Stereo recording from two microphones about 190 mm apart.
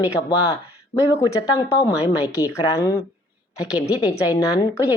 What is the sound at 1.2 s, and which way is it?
A woman's voice, 20° left (ahead or behind).